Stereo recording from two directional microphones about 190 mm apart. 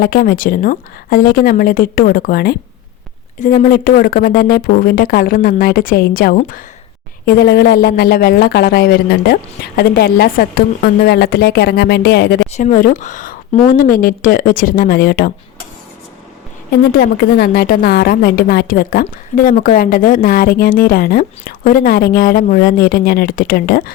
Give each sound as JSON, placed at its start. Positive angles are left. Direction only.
{"t": 0.0, "sound": "a woman's voice", "side_deg": 50}
{"t": 12.5, "sound": "a woman's voice", "side_deg": 40}
{"t": 16.9, "sound": "a woman's voice", "side_deg": 55}